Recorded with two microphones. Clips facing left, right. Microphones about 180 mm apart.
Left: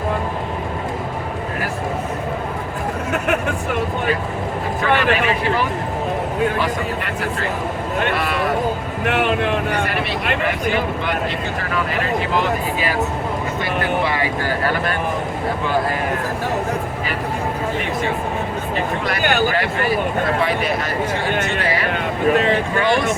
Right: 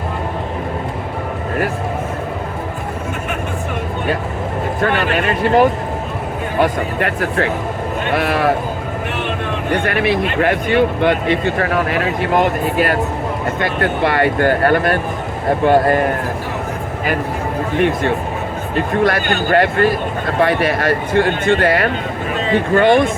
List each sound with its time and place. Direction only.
4.9 s speech: 55° right (ahead or behind)
9.7 s speech: 60° right (ahead or behind)
19.0 s speech: 50° right (ahead or behind)